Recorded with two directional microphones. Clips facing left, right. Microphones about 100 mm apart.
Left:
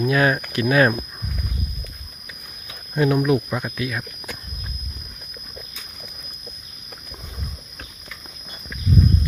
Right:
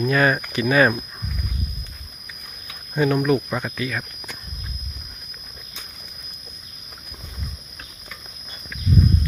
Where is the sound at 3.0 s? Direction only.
Centre (ahead or behind).